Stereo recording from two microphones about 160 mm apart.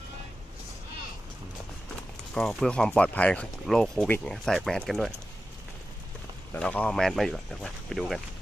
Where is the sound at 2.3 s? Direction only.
5° left (ahead or behind).